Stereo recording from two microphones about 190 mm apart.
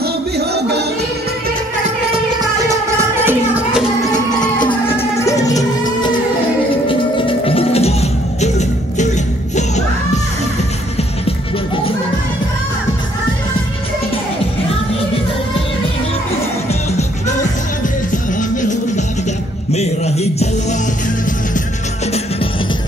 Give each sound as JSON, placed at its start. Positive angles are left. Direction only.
{"t": 0.0, "sound": "music", "side_deg": -60}
{"t": 2.7, "sound": "music", "side_deg": -15}
{"t": 4.8, "sound": "music", "side_deg": 15}
{"t": 11.2, "sound": "music", "side_deg": 30}
{"t": 18.1, "sound": "music", "side_deg": 40}
{"t": 19.7, "sound": "a sound", "side_deg": 35}